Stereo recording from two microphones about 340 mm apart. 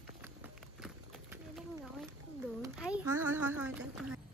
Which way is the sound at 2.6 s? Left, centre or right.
Centre.